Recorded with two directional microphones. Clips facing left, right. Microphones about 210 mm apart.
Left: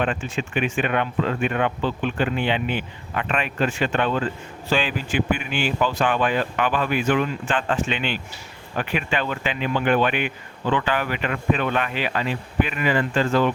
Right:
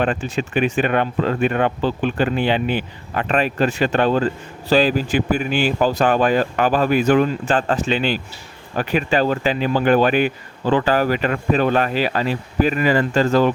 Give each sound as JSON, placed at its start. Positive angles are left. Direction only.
{"t": 0.0, "sound": "speech", "side_deg": -40}